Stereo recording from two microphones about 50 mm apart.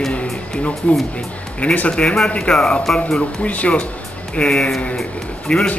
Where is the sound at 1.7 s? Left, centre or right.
Left.